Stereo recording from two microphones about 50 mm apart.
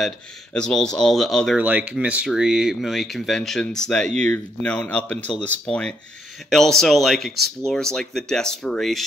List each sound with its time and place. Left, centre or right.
0.5 s speech: centre
1.6 s speech: right
2.2 s speech: centre
2.8 s speech: centre